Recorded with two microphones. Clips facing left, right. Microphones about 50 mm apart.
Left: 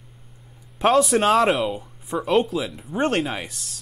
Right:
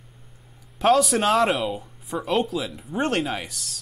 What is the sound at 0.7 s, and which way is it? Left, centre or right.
Speech, centre.